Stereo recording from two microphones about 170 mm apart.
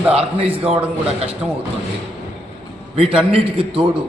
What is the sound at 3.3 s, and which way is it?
Speech, 35° right (ahead or behind).